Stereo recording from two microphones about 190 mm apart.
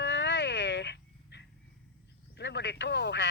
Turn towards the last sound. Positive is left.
turn(degrees=65)  # may be behind; listen again after turning